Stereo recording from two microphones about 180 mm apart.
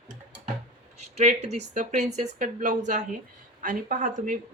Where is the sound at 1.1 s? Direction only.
40° right (ahead or behind).